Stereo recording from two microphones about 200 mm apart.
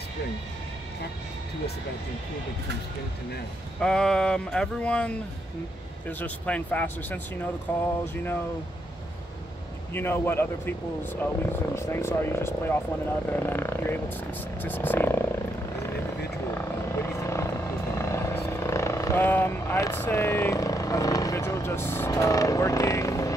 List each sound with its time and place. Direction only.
3.8 s speech: 5° left (ahead or behind)
9.9 s speech: 10° left (ahead or behind)
16.5 s vehicle: 15° left (ahead or behind)